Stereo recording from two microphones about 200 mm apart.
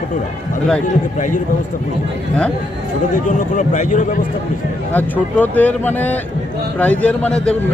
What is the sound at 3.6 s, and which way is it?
Speech, 35° left (ahead or behind).